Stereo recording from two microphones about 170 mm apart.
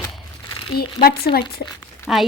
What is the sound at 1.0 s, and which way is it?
Speech, 65° left (ahead or behind).